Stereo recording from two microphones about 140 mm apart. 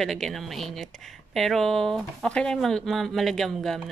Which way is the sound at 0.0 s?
Centre (ahead or behind).